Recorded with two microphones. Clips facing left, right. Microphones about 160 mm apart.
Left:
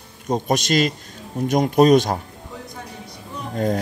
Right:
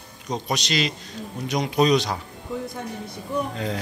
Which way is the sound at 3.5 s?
45° left (ahead or behind).